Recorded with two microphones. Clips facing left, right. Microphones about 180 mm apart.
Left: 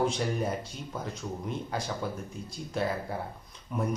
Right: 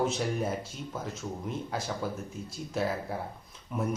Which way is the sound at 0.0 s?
Centre (ahead or behind).